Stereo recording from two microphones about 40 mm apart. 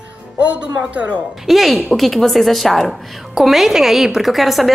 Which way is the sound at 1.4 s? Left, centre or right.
Centre.